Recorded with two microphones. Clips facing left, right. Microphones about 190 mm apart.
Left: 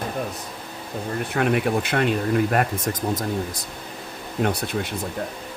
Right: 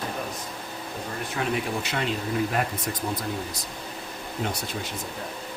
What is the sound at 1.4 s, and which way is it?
Speech, 60° left (ahead or behind).